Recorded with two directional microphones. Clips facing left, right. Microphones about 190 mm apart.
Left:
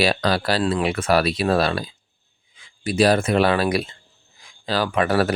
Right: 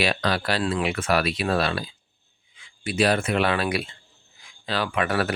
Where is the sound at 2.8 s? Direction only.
40° left (ahead or behind).